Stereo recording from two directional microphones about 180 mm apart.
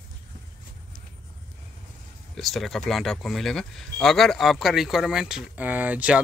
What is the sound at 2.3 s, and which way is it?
Speech, centre (ahead or behind).